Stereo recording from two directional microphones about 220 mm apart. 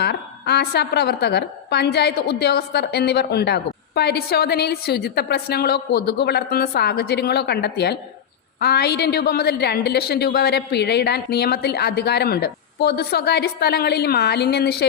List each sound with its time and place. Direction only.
0.0 s a woman's voice: 50° left (ahead or behind)